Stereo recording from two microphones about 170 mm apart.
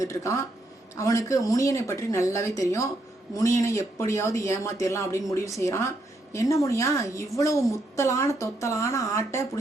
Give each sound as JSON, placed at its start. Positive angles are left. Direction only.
{"t": 0.0, "sound": "a woman's voice", "side_deg": 15}